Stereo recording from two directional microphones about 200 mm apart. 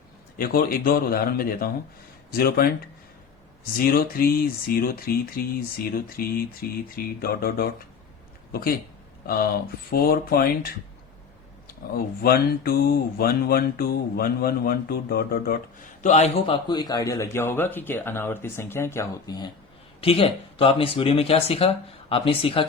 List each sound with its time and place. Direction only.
0.3 s speech: 45° left (ahead or behind)
3.8 s speech: 50° left (ahead or behind)
9.2 s speech: 50° left (ahead or behind)
11.9 s speech: 50° left (ahead or behind)
16.0 s a man's voice: 35° left (ahead or behind); by 19.5 s 20° left (ahead or behind)
20.0 s speech: 30° left (ahead or behind)